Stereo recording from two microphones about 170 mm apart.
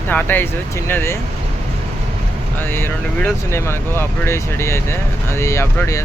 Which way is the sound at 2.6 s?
15° left (ahead or behind).